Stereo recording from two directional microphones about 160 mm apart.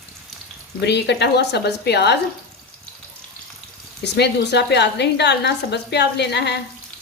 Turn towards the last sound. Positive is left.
turn(degrees=90)